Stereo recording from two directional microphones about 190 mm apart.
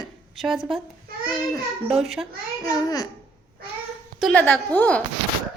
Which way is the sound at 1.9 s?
Centre (ahead or behind).